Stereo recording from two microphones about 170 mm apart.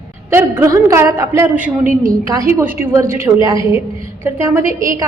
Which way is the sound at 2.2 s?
20° right (ahead or behind).